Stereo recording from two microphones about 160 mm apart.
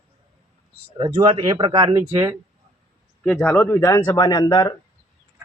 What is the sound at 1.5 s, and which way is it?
Speech, 25° right (ahead or behind).